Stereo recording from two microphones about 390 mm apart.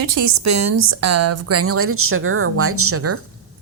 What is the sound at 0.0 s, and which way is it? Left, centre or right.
A woman's voice, right.